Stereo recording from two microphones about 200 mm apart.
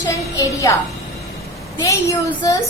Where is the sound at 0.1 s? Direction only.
15° left (ahead or behind).